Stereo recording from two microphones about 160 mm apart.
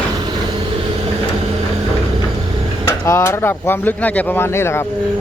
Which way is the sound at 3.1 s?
15° left (ahead or behind).